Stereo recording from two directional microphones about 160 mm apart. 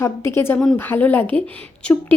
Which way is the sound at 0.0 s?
15° left (ahead or behind).